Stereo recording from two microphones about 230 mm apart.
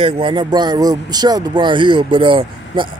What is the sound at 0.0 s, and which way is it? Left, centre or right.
Speech, right.